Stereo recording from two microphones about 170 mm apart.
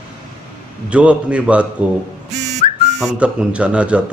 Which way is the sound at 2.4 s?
45° right (ahead or behind).